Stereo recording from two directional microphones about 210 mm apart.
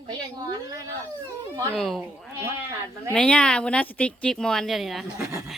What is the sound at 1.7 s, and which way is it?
Speech, centre (ahead or behind).